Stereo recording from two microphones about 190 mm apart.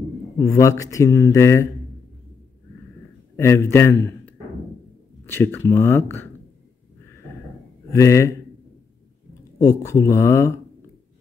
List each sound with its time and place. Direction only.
0.4 s speech: 15° left (ahead or behind)
3.3 s a man's voice: 15° left (ahead or behind)
7.9 s speech: 15° left (ahead or behind)
9.6 s speech: 20° left (ahead or behind)